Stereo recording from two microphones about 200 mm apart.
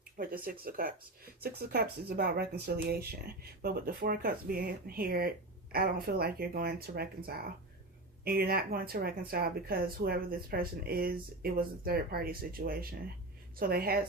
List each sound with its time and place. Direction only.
0.2 s speech: 45° right (ahead or behind)
8.2 s speech: 50° right (ahead or behind)